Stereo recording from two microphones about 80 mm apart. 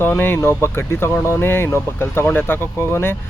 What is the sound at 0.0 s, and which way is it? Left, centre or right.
Speech, left.